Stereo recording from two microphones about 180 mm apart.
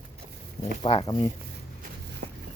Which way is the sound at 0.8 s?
25° left (ahead or behind).